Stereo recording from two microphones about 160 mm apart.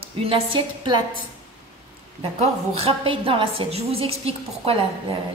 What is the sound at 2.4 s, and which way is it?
A woman's voice, 35° right (ahead or behind).